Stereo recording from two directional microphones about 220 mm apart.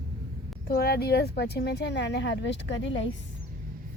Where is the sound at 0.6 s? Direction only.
45° left (ahead or behind).